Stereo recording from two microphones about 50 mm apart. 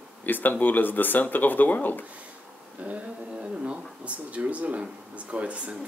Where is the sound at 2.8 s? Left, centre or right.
Right.